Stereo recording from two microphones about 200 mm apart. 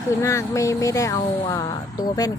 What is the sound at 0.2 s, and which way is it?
Speech, 15° left (ahead or behind).